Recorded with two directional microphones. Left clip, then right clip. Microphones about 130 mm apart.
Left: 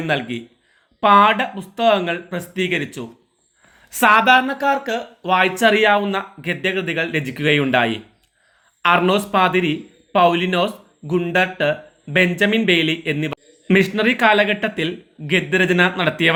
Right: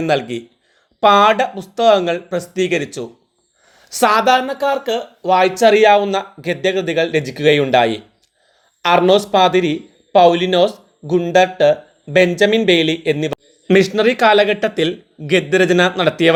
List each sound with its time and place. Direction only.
0.0 s speech: 35° right (ahead or behind)